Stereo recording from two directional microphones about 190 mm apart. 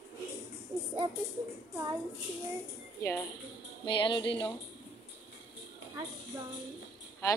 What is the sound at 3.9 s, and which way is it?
Speech, 25° left (ahead or behind).